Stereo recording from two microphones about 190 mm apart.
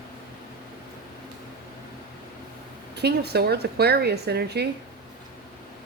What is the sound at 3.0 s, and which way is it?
A woman's voice, 60° right (ahead or behind).